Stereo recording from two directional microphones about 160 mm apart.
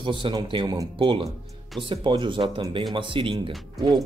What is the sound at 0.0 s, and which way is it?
Speech, 30° right (ahead or behind).